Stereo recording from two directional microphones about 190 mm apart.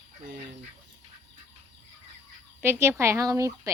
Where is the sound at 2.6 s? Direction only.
10° right (ahead or behind).